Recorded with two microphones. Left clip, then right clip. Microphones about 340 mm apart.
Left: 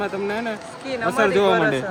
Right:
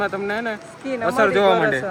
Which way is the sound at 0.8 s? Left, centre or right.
Right.